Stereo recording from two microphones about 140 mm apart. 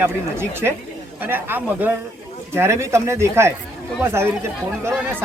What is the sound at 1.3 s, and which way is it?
Speech, 15° right (ahead or behind).